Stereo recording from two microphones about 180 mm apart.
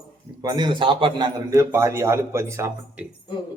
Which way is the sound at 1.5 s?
15° right (ahead or behind).